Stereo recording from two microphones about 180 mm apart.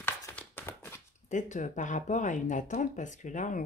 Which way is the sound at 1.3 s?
45° left (ahead or behind).